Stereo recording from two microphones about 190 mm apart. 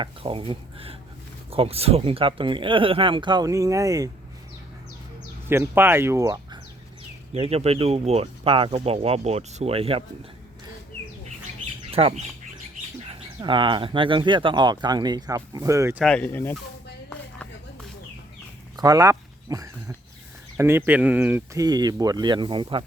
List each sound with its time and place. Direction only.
0.0 s speech: 30° right (ahead or behind)
5.5 s speech: 10° right (ahead or behind)
7.3 s speech: 30° right (ahead or behind)
11.9 s speech: 30° right (ahead or behind)
16.0 s speech: 5° left (ahead or behind)
18.8 s speech: 15° right (ahead or behind)